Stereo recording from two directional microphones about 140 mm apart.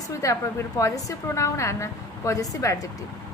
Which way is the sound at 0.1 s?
20° left (ahead or behind).